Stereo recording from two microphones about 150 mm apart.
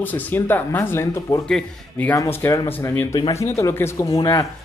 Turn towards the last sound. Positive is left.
turn(degrees=25)  # may be behind; listen again after turning